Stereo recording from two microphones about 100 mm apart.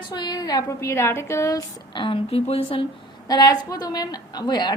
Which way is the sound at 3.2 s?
40° left (ahead or behind).